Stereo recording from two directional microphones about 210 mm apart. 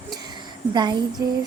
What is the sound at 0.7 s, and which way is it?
Speech, 20° right (ahead or behind).